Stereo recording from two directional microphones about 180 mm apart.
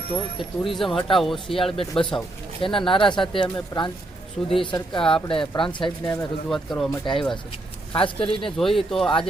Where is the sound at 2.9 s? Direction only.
25° left (ahead or behind).